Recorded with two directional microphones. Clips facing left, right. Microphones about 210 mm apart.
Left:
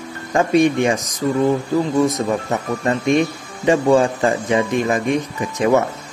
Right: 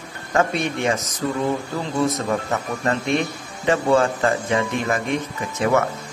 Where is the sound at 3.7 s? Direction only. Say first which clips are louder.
Left 4 dB; 15° left (ahead or behind).